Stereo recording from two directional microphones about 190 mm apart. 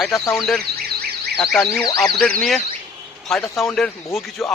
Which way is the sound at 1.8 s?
15° left (ahead or behind).